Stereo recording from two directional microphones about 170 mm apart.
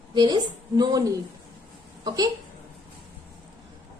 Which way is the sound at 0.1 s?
25° right (ahead or behind).